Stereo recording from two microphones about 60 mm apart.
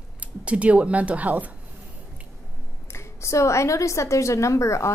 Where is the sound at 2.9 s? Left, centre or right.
Left.